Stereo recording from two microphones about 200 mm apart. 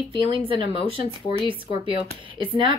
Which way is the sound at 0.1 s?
25° right (ahead or behind).